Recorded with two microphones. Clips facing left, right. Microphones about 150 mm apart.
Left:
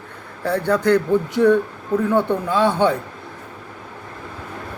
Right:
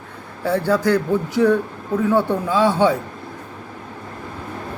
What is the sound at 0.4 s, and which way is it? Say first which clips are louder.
A man's voice: even; 5° right (ahead or behind).